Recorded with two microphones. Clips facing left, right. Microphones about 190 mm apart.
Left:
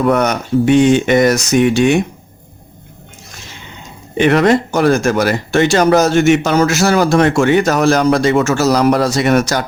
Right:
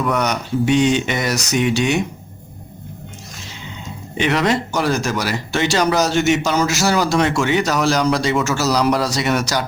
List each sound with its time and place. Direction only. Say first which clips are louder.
0.0 s speech: left 6 dB; 50° left (ahead or behind)
4.2 s speech: left 7 dB; 50° left (ahead or behind)